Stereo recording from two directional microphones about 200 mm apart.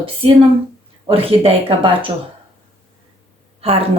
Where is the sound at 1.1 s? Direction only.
30° right (ahead or behind).